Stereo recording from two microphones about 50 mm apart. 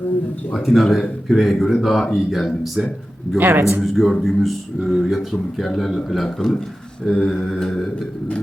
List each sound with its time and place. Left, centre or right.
0.6 s speech: centre
3.5 s a man's voice: right
3.8 s speech: centre
6.2 s speech: centre